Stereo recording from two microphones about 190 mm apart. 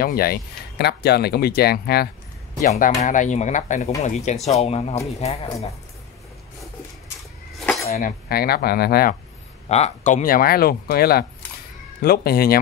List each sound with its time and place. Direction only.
0.0 s speech: 50° left (ahead or behind)
2.7 s speech: 40° left (ahead or behind)
7.5 s cutlery: centre (ahead or behind)
7.9 s speech: 55° left (ahead or behind)
9.7 s speech: 35° left (ahead or behind); by 12.5 s 50° left (ahead or behind)